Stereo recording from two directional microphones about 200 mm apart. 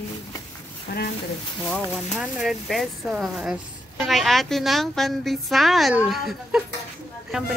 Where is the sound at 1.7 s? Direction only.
Centre (ahead or behind).